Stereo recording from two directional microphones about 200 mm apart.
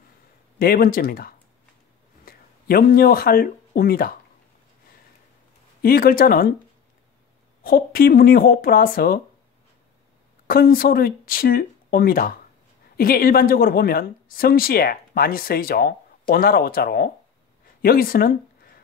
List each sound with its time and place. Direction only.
0.6 s a woman's voice: 50° left (ahead or behind)
5.8 s a woman's voice: 50° left (ahead or behind)
7.6 s a woman's voice: 45° left (ahead or behind)
10.4 s a woman's voice: 45° left (ahead or behind)